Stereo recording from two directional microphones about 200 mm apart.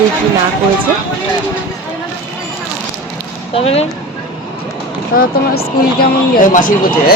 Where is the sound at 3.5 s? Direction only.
30° left (ahead or behind).